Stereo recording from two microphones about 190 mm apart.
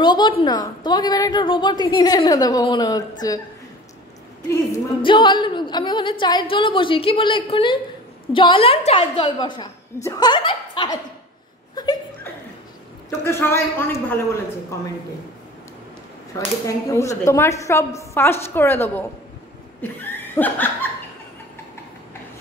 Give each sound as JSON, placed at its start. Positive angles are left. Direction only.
{"t": 0.0, "sound": "a woman's voice", "side_deg": 25}
{"t": 4.5, "sound": "a woman's voice", "side_deg": 20}
{"t": 11.7, "sound": "chuckle", "side_deg": 20}
{"t": 13.2, "sound": "a woman's voice", "side_deg": 15}
{"t": 16.3, "sound": "a woman's voice", "side_deg": 15}